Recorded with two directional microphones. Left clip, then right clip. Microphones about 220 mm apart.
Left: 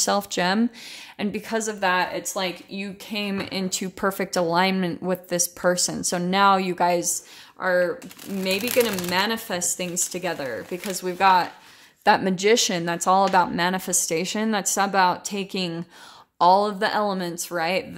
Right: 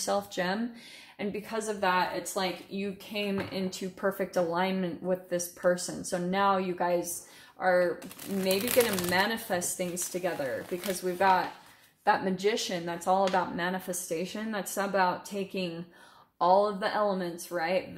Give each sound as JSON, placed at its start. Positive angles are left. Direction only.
{"t": 0.0, "sound": "a woman's voice", "side_deg": 50}
{"t": 7.6, "sound": "speech", "side_deg": 35}
{"t": 12.0, "sound": "a woman's voice", "side_deg": 50}